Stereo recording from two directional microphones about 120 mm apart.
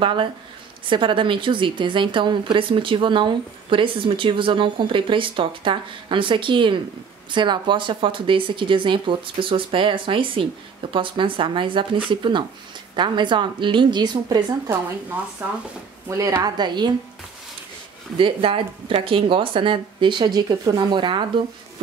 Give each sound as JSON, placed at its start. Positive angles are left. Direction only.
{"t": 0.0, "sound": "a woman's voice", "side_deg": -45}
{"t": 15.4, "sound": "speech", "side_deg": -15}
{"t": 16.1, "sound": "a woman's voice", "side_deg": -25}
{"t": 16.4, "sound": "a woman's voice", "side_deg": -35}
{"t": 18.1, "sound": "a woman's voice", "side_deg": -45}